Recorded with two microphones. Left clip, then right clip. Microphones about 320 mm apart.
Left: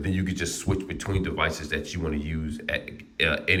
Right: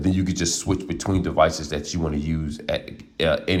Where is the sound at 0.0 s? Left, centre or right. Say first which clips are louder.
Right 6 dB; centre.